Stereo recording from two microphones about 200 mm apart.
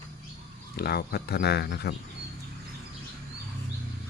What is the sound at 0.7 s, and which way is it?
Speech, 50° left (ahead or behind).